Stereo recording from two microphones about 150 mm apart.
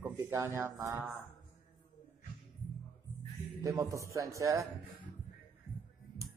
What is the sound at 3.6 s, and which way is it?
Speech, 20° right (ahead or behind).